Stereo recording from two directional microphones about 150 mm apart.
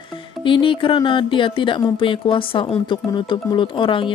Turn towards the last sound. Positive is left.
turn(degrees=35)  # may be behind; listen again after turning